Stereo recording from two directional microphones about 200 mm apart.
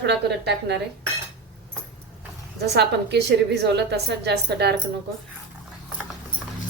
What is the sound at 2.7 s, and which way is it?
A woman's voice, 55° right (ahead or behind).